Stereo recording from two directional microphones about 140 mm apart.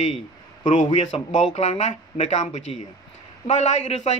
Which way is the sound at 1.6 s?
55° left (ahead or behind).